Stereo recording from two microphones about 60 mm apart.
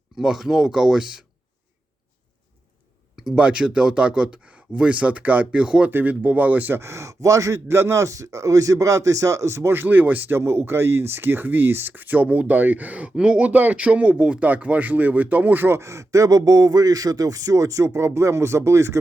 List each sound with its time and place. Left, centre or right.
0.2 s speech: centre
3.2 s speech: centre
6.7 s speech: right
10.3 s speech: right
15.8 s speech: right